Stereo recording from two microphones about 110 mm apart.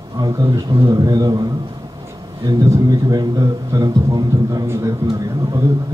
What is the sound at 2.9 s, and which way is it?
A man's voice, 35° right (ahead or behind).